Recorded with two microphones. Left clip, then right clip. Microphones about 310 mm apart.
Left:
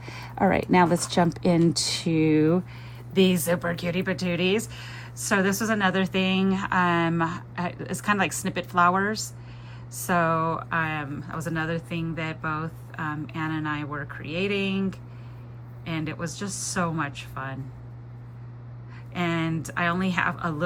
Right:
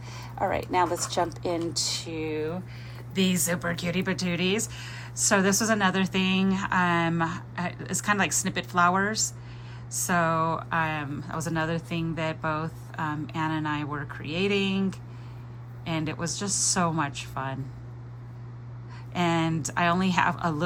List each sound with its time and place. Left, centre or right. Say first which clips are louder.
0.0 s a sound: left 3 dB; left
1.7 s speech: left 4 dB; left
3.1 s speech: left 5 dB; centre
19.1 s speech: right 2 dB; centre